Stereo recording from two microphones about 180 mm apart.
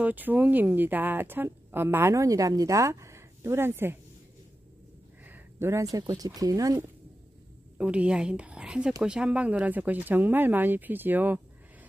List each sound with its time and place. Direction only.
0.0 s speech: 10° right (ahead or behind)
5.2 s speech: 10° right (ahead or behind)
7.7 s a woman's voice: 5° right (ahead or behind)